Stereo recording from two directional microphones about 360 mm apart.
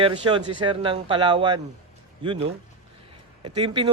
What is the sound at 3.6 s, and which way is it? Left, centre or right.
Speech, centre.